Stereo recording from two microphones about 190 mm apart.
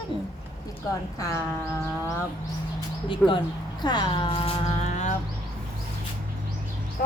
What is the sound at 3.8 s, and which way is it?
Speech, 20° left (ahead or behind).